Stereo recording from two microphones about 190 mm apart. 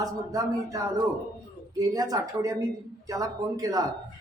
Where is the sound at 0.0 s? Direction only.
20° right (ahead or behind).